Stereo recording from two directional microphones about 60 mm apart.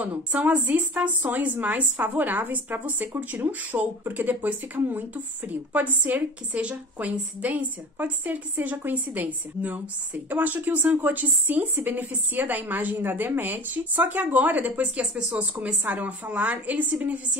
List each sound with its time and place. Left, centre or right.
0.0 s a woman's voice: right
15.1 s speech: centre
15.6 s a woman's voice: right